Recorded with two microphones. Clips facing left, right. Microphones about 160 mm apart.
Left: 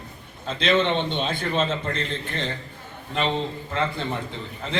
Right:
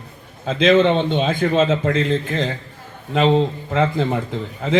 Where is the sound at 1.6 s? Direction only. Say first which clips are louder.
Right 9 dB; 90° right.